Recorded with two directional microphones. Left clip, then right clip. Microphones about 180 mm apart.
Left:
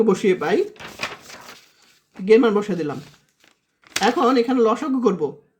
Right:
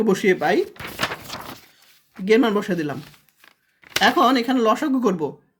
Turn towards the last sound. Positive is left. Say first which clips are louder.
# left 1 dB
turn(degrees=-30)  # may be behind; listen again after turning